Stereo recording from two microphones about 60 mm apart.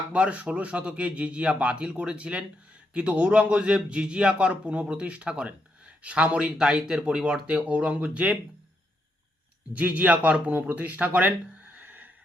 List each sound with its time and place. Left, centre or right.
0.1 s a man's voice: centre
7.4 s a man's voice: centre
9.7 s a man's voice: right
11.8 s music: right